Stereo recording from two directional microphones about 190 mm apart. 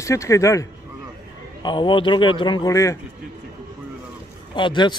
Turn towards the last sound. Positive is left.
turn(degrees=25)  # may be behind; listen again after turning